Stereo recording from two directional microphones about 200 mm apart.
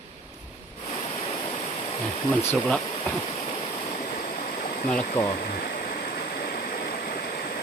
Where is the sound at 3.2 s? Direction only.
30° left (ahead or behind).